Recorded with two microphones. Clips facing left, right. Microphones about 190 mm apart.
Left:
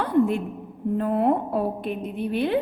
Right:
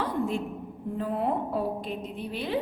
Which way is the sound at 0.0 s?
60° left (ahead or behind).